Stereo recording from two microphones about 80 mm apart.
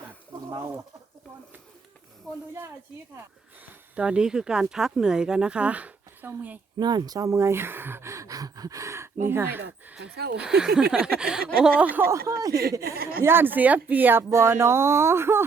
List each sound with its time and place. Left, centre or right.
3.7 s speech: centre
6.7 s speech: right
7.3 s speech: right
9.9 s speech: centre
12.1 s speech: right
13.2 s speech: right
14.2 s speech: right